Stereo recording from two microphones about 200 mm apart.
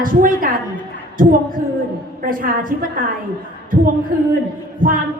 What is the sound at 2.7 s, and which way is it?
Speech, 45° right (ahead or behind).